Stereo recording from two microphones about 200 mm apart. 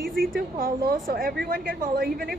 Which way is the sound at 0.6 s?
50° right (ahead or behind).